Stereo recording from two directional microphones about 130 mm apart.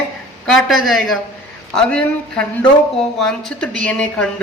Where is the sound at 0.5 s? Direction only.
Centre (ahead or behind).